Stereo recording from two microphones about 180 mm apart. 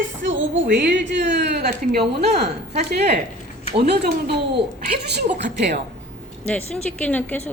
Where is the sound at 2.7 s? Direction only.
40° right (ahead or behind).